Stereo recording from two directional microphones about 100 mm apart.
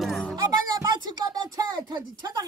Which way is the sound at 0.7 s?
40° right (ahead or behind).